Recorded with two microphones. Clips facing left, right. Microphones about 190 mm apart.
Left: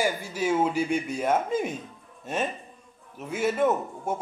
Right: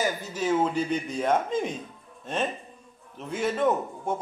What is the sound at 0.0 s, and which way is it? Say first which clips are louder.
Speech: left 1 dB; 10° left (ahead or behind).